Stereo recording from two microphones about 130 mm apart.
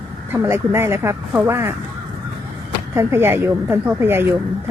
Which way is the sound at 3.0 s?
20° right (ahead or behind).